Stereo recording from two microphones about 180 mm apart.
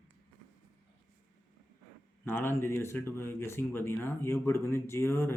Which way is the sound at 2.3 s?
15° left (ahead or behind).